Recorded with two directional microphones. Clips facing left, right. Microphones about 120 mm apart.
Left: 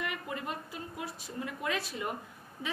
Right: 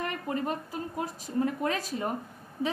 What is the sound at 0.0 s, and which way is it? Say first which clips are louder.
A woman's voice: right 6 dB; 40° right (ahead or behind).